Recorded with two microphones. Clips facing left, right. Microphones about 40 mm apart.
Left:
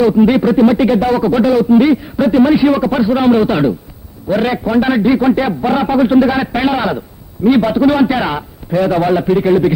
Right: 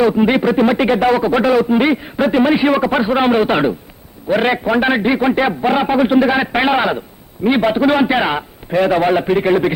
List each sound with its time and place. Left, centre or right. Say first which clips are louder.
0.0 s speech: left 3 dB; right